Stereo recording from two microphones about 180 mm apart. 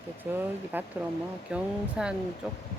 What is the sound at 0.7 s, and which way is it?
A woman's voice, 10° right (ahead or behind).